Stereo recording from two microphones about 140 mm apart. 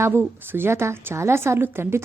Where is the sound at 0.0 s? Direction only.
15° right (ahead or behind).